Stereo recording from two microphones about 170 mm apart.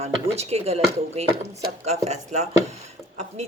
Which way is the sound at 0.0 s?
40° right (ahead or behind).